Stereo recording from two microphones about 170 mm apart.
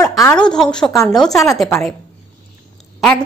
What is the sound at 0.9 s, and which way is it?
Speech, 15° left (ahead or behind).